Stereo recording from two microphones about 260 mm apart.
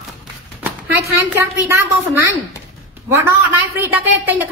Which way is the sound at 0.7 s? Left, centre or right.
Centre.